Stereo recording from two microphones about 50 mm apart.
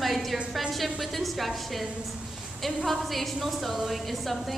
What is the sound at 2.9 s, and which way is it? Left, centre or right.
A woman's voice, centre.